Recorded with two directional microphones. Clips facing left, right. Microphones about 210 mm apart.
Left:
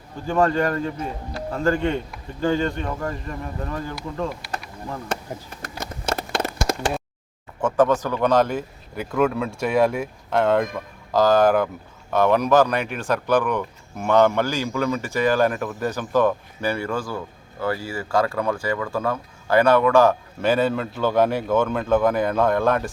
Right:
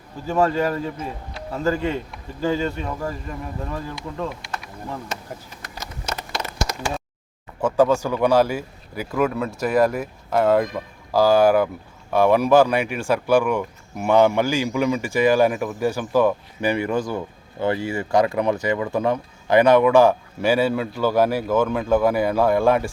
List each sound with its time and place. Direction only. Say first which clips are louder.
0.3 s speech: even; 5° right (ahead or behind)
6.3 s a sound: left 3 dB; 55° left (ahead or behind)
7.6 s speech: right 1 dB; 10° right (ahead or behind)